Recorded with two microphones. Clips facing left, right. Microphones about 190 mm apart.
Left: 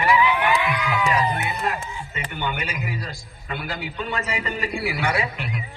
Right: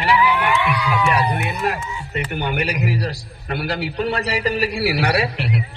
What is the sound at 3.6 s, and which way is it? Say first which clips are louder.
A man's voice: right 9 dB; 75° right (ahead or behind).